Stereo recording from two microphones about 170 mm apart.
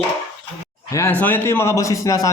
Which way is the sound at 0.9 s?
15° left (ahead or behind).